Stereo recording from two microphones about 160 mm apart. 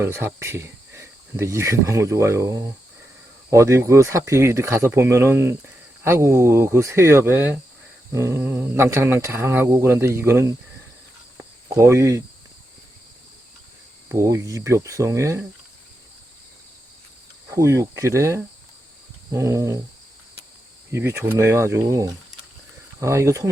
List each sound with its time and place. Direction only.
0.0 s speech: 15° right (ahead or behind)
11.7 s speech: 20° right (ahead or behind)
14.1 s speech: 20° right (ahead or behind)
17.5 s speech: 20° right (ahead or behind)
20.9 s speech: 15° right (ahead or behind)